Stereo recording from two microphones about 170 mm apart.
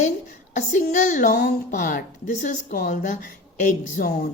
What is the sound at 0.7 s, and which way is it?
A woman's voice, 50° left (ahead or behind).